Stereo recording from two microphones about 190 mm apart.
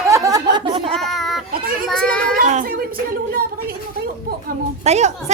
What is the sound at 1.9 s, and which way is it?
Speech, 5° left (ahead or behind).